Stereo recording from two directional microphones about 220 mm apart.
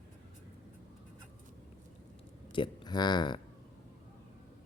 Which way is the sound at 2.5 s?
20° left (ahead or behind).